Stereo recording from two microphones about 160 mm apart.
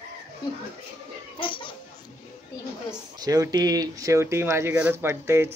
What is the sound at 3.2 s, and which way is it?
Speech, 25° right (ahead or behind).